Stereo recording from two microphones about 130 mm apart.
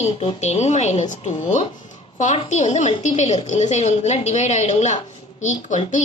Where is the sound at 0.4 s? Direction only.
60° left (ahead or behind).